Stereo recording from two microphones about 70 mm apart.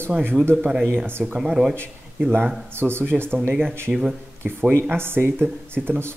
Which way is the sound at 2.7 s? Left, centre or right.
Right.